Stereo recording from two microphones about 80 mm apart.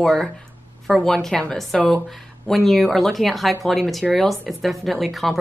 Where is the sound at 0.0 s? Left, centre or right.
Centre.